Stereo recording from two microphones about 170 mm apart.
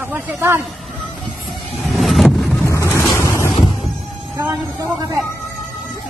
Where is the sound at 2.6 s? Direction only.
15° left (ahead or behind).